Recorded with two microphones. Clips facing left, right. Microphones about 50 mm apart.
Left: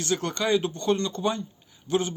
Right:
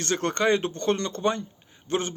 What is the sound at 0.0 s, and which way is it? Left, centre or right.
Speech, right.